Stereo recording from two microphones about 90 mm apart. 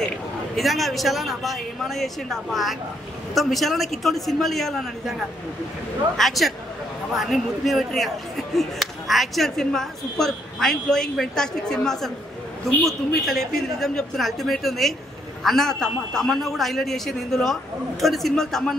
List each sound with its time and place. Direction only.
0.6 s speech: centre (ahead or behind)
6.1 s speech: centre (ahead or behind)